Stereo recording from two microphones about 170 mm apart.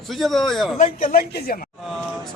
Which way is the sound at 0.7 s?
50° left (ahead or behind).